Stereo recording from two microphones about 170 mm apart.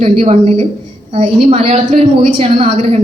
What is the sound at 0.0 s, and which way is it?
A woman's voice, 35° right (ahead or behind).